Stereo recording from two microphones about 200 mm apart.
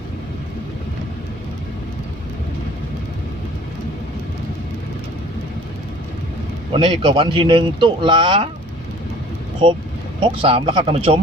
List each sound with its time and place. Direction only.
6.7 s speech: 25° right (ahead or behind)
9.6 s speech: 25° right (ahead or behind)